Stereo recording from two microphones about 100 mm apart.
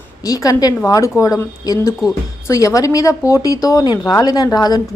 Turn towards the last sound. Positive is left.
turn(degrees=40)  # may be behind; listen again after turning